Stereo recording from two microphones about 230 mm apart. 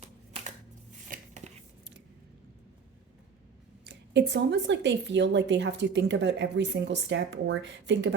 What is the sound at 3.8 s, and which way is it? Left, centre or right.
A woman's voice, right.